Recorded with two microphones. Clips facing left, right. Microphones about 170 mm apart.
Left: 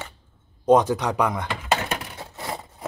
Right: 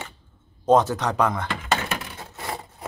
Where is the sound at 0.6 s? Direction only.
15° left (ahead or behind).